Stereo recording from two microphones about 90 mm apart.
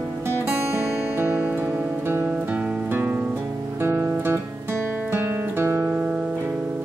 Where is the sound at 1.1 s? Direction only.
20° right (ahead or behind).